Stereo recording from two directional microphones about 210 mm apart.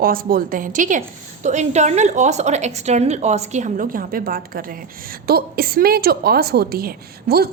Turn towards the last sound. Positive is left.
turn(degrees=-50)  # may be behind; listen again after turning